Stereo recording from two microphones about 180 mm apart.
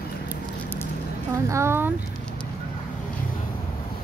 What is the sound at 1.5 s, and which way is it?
Speech, 15° right (ahead or behind).